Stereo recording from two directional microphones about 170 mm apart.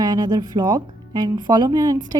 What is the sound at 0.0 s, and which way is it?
A woman's voice, 25° right (ahead or behind).